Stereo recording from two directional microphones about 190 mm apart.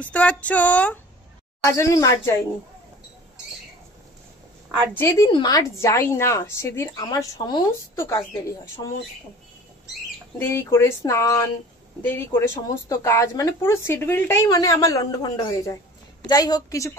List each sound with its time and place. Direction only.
0.0 s speech: 5° left (ahead or behind)
4.9 s a woman's voice: 15° left (ahead or behind)
10.4 s a woman's voice: 15° left (ahead or behind)